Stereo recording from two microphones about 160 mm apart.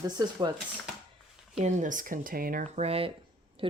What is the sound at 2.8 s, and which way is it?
Speech, 35° right (ahead or behind).